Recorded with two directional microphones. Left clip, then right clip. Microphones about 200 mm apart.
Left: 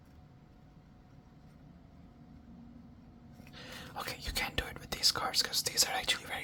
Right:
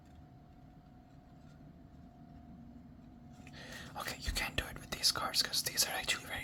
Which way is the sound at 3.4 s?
15° left (ahead or behind).